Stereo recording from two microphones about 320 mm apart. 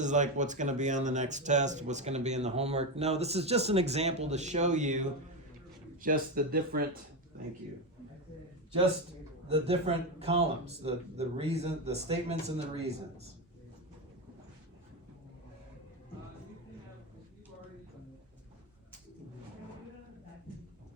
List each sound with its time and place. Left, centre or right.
0.0 s speech: right
9.5 s speech: centre